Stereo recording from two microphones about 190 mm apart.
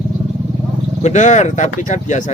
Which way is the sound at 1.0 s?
40° left (ahead or behind).